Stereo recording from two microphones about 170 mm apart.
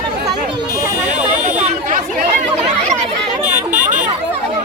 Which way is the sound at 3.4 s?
10° right (ahead or behind).